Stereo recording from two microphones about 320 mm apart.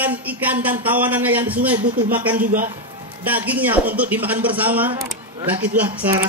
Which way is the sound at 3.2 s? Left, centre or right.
Centre.